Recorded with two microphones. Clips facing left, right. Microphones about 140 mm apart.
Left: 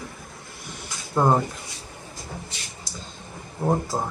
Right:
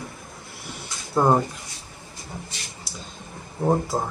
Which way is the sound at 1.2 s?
5° right (ahead or behind).